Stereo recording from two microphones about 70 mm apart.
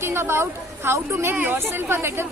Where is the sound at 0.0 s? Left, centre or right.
Right.